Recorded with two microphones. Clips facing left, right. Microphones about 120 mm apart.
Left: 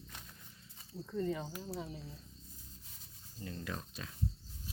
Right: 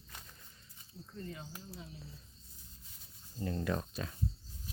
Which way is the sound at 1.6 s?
65° left (ahead or behind).